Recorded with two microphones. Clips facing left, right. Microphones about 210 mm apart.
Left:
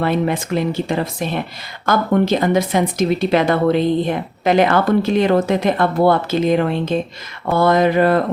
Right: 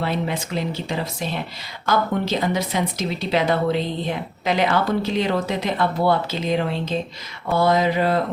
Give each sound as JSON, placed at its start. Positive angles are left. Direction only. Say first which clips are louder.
{"t": 0.0, "sound": "speech", "louder": "left 6 dB", "side_deg": 55}